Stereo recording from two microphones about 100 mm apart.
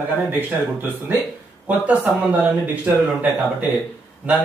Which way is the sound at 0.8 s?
20° right (ahead or behind).